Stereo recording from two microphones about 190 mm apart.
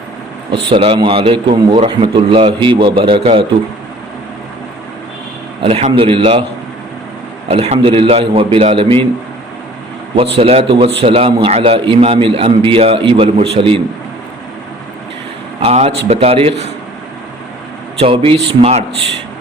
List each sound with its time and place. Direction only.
0.7 s a man's voice: 25° right (ahead or behind)
5.6 s a man's voice: 30° right (ahead or behind)
7.4 s a man's voice: 35° right (ahead or behind)
10.3 s a man's voice: 30° right (ahead or behind)
15.6 s a man's voice: 35° right (ahead or behind)
18.0 s a man's voice: 30° right (ahead or behind)